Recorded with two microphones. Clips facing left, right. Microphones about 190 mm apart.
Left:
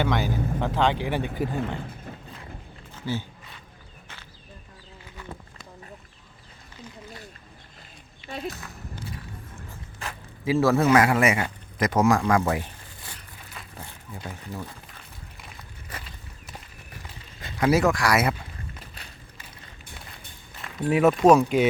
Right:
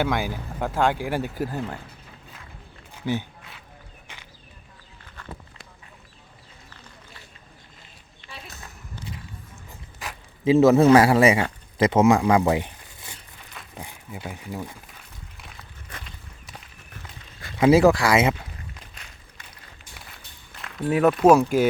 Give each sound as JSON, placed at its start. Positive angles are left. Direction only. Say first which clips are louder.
{"t": 0.0, "sound": "speech", "louder": "even", "side_deg": -10}
{"t": 2.9, "sound": "a sound", "louder": "right 3 dB", "side_deg": -15}
{"t": 10.1, "sound": "zipper", "louder": "right 6 dB", "side_deg": -20}
{"t": 10.8, "sound": "speech", "louder": "right 5 dB", "side_deg": -30}
{"t": 13.7, "sound": "speech", "louder": "right 4 dB", "side_deg": -10}
{"t": 17.6, "sound": "speech", "louder": "right 5 dB", "side_deg": -25}
{"t": 19.0, "sound": "a sound", "louder": "left 2 dB", "side_deg": 35}
{"t": 20.6, "sound": "speech", "louder": "even", "side_deg": 0}